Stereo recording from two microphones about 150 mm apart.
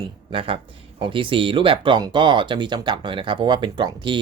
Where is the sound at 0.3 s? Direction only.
35° right (ahead or behind).